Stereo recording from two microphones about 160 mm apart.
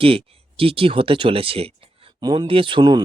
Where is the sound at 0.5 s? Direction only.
35° right (ahead or behind).